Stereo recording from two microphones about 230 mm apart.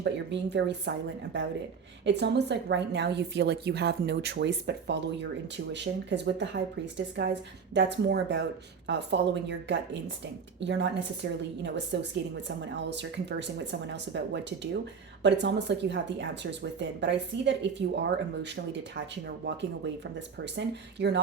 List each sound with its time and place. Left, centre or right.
0.0 s a woman's voice: right
20.4 s a woman's voice: right